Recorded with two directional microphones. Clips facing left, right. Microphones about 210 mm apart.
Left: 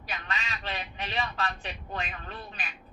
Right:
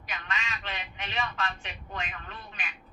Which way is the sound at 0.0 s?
35° left (ahead or behind).